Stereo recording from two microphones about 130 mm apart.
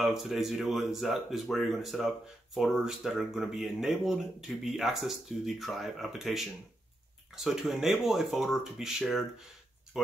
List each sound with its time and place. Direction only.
0.0 s speech: centre (ahead or behind)